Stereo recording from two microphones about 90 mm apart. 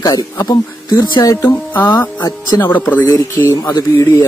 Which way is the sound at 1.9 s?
45° left (ahead or behind).